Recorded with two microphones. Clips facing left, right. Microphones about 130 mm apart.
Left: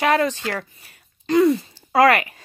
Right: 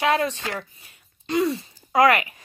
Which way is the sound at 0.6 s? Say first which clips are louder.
Left 3 dB; 35° left (ahead or behind).